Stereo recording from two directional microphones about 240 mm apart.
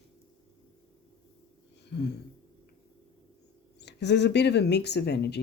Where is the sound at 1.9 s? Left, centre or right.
Left.